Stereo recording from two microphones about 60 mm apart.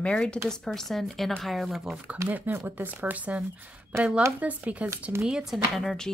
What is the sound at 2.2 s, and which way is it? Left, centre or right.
Speech, right.